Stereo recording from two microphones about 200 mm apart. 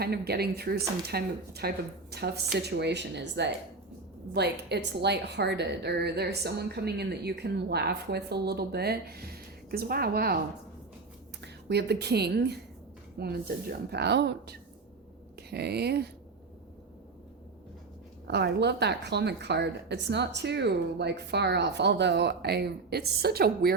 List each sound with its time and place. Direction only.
0.0 s a woman's voice: 50° right (ahead or behind)
11.3 s a woman's voice: 55° right (ahead or behind)
18.3 s a woman's voice: 55° right (ahead or behind)